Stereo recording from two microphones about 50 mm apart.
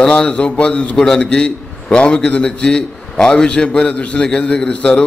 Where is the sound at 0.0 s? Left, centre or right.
Centre.